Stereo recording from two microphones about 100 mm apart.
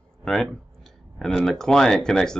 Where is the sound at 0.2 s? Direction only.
5° left (ahead or behind).